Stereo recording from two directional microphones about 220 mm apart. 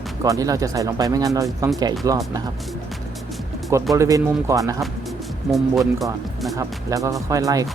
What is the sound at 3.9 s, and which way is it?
Speech, 15° right (ahead or behind).